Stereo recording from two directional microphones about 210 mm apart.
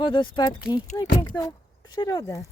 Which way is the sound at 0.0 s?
20° left (ahead or behind).